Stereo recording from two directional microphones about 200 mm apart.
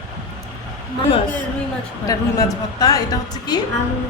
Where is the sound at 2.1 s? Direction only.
20° left (ahead or behind).